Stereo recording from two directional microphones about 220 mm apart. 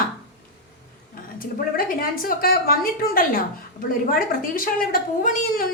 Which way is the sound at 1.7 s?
40° left (ahead or behind).